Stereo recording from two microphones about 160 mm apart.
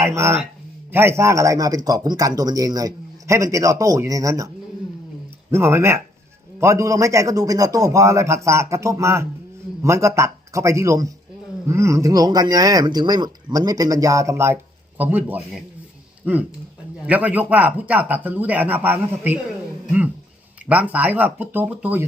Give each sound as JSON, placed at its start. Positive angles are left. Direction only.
{"t": 0.0, "sound": "speech", "side_deg": -15}
{"t": 20.7, "sound": "speech", "side_deg": -10}